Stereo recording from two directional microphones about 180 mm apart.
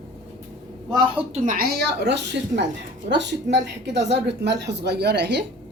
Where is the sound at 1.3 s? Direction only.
45° right (ahead or behind); by 5.4 s 65° right (ahead or behind).